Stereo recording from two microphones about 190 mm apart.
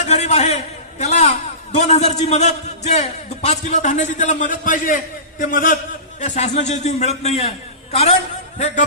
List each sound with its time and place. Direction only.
0.0 s a man's voice: 35° left (ahead or behind)
8.5 s a man's voice: 35° left (ahead or behind)